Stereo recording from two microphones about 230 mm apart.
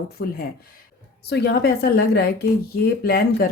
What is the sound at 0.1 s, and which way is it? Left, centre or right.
Speech, left.